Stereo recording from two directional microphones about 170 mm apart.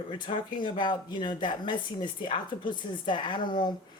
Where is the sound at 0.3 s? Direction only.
25° left (ahead or behind).